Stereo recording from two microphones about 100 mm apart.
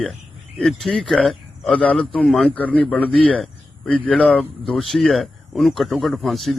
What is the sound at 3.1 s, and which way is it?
Speech, centre (ahead or behind).